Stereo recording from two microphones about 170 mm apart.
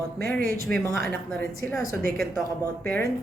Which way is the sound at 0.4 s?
60° right (ahead or behind).